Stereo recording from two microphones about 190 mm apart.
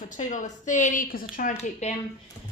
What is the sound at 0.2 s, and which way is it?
A woman's voice, 40° left (ahead or behind).